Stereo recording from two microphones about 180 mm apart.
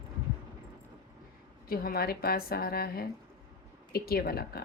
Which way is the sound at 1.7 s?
55° left (ahead or behind).